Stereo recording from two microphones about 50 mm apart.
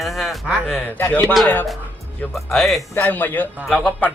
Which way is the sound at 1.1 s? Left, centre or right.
Left.